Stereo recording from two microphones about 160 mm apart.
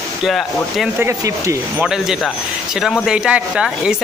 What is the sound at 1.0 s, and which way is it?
Speech, 20° right (ahead or behind).